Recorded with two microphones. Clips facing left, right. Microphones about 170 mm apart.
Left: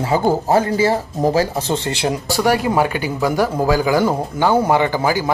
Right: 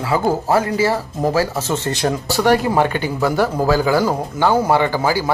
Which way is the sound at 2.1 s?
10° left (ahead or behind).